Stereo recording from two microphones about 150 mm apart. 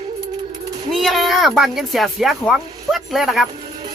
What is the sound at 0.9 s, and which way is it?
Speech, centre (ahead or behind).